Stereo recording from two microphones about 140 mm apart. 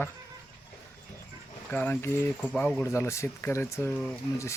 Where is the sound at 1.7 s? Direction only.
15° left (ahead or behind).